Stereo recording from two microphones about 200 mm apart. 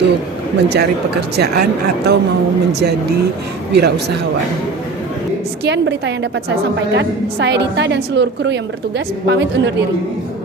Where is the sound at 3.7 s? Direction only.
55° right (ahead or behind).